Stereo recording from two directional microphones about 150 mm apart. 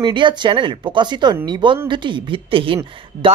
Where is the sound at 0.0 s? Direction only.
30° right (ahead or behind).